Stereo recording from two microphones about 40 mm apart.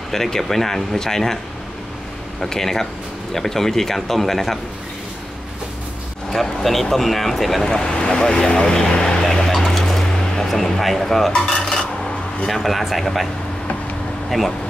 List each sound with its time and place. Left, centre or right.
0.1 s speech: centre
2.4 s speech: centre
6.3 s speech: centre; by 9.2 s left
9.2 s a sound: centre
9.7 s dishes: centre
12.4 s speech: centre